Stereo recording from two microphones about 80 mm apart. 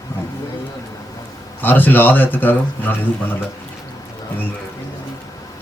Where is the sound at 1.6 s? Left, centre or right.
Left.